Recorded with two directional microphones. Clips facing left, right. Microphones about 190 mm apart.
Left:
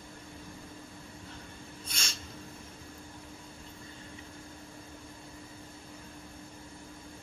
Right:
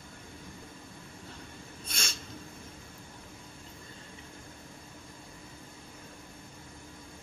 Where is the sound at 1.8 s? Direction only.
50° right (ahead or behind).